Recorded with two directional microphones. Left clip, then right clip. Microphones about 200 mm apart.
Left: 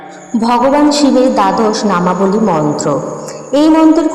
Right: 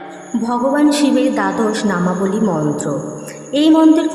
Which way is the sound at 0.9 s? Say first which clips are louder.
Left 5 dB; 10° left (ahead or behind).